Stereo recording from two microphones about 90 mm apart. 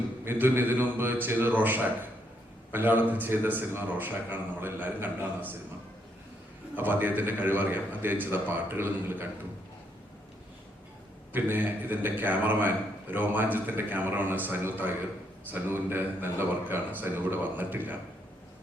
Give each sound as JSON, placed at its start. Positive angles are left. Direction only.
{"t": 0.3, "sound": "a man's voice", "side_deg": -25}
{"t": 6.7, "sound": "a man's voice", "side_deg": -20}
{"t": 11.3, "sound": "a man's voice", "side_deg": -20}